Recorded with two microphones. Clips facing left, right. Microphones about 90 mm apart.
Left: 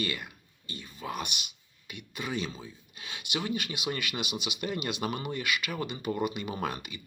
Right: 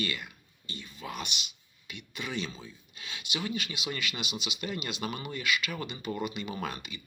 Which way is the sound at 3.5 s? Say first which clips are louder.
Left 2 dB; 50° left (ahead or behind).